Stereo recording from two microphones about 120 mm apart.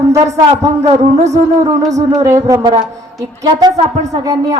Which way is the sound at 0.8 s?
65° right (ahead or behind).